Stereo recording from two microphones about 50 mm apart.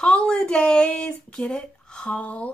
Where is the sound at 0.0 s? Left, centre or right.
Left.